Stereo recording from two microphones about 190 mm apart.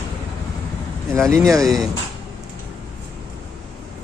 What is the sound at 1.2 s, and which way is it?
Speech, centre (ahead or behind).